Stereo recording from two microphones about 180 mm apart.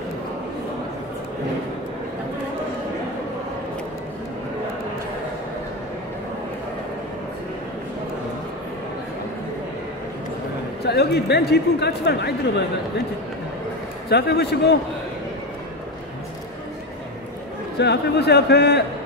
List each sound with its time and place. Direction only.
10.9 s speech: 65° left (ahead or behind)
14.0 s speech: 65° left (ahead or behind)
17.7 s a man's voice: 65° left (ahead or behind)